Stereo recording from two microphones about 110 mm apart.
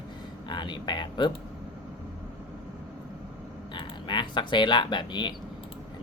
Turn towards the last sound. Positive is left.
turn(degrees=45)  # may be behind; listen again after turning